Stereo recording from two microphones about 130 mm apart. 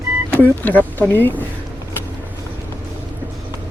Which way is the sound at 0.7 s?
10° left (ahead or behind).